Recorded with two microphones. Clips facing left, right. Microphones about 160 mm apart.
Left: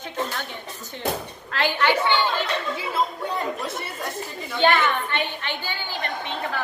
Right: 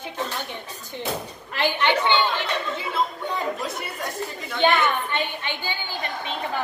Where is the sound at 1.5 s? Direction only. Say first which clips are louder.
Even; 15° right (ahead or behind).